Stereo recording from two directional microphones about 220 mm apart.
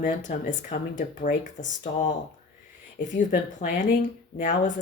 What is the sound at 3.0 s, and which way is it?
Speech, 35° left (ahead or behind).